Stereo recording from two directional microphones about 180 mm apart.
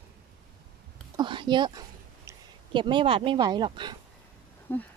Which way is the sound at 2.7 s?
25° right (ahead or behind).